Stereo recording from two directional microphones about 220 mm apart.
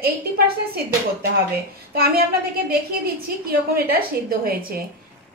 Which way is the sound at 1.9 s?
45° right (ahead or behind).